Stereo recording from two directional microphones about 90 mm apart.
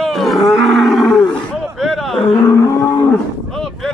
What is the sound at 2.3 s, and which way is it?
Vehicle, 40° left (ahead or behind).